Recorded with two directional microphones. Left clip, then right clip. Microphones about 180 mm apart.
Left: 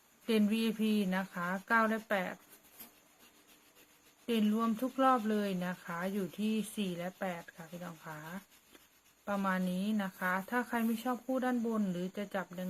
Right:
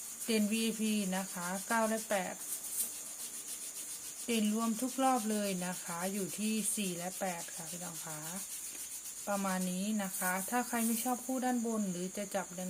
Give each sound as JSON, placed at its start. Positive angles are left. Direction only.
{"t": 0.3, "sound": "speech", "side_deg": 20}
{"t": 4.3, "sound": "speech", "side_deg": 20}
{"t": 9.2, "sound": "speech", "side_deg": 20}